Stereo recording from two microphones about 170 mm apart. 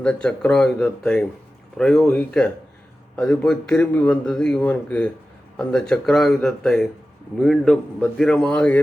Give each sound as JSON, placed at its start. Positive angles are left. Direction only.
{"t": 0.0, "sound": "a man's voice", "side_deg": 5}